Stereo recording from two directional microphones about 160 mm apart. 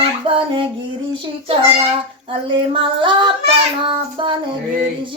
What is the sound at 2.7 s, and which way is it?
Child singing, 30° right (ahead or behind).